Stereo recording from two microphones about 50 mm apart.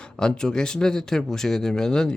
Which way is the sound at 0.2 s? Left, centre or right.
Centre.